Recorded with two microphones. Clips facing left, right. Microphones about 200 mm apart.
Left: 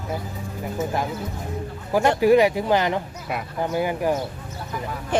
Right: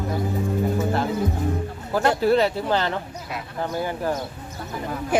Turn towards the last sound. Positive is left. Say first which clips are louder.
# right 1 dB
turn(degrees=-10)  # may be behind; listen again after turning